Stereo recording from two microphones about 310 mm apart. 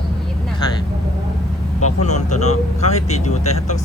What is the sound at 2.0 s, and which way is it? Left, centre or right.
Speech, left.